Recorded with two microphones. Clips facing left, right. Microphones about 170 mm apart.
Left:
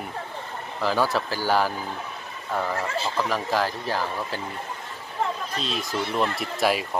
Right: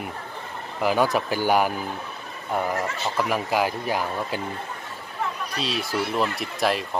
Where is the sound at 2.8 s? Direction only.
30° left (ahead or behind).